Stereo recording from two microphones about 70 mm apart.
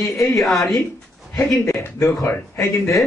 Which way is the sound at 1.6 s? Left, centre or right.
Left.